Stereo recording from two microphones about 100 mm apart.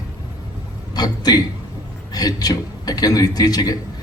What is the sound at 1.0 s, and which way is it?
A man's voice, 40° left (ahead or behind).